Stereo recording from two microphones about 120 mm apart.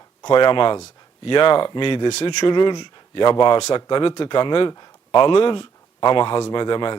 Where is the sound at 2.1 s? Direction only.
65° left (ahead or behind).